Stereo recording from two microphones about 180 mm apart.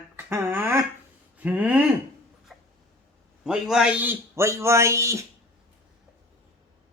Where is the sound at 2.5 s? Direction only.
Centre (ahead or behind).